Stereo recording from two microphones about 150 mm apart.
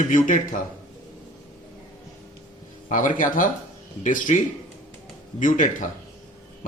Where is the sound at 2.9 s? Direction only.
60° left (ahead or behind).